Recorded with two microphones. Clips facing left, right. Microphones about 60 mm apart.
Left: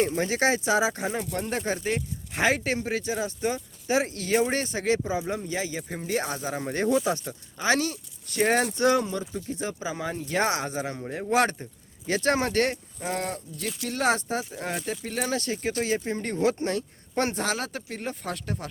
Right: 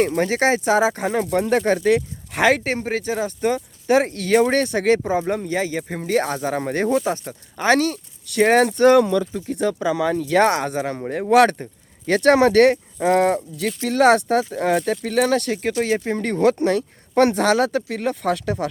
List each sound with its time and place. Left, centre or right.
0.0 s speech: right
1.1 s speech: right
2.6 s speech: right
6.9 s speech: right
7.5 s speech: right
10.4 s speech: right
11.1 s speech: right
11.5 s speech: right